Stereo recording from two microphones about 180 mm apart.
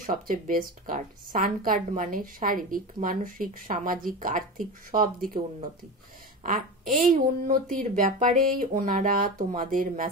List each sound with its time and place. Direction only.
0.0 s speech: 50° right (ahead or behind)
6.4 s speech: 45° right (ahead or behind)